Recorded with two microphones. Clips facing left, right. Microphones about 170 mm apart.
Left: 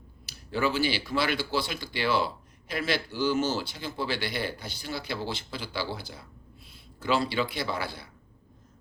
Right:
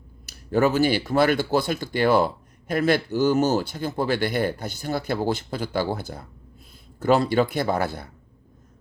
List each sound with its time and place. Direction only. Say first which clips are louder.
0.3 s speech: right 8 dB; 45° right (ahead or behind)